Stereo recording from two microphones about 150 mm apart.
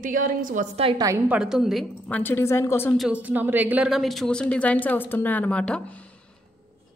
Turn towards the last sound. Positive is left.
turn(degrees=10)  # may be behind; listen again after turning